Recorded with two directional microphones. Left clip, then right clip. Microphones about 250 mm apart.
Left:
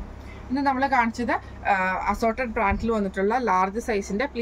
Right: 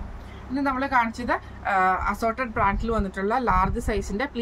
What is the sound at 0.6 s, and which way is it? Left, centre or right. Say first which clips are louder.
Speech: left 1 dB; centre.